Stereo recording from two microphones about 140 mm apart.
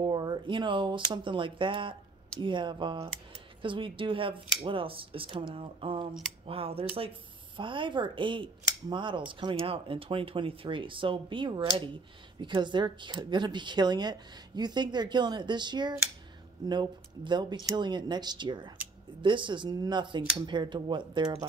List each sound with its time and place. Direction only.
0.0 s speech: 35° right (ahead or behind)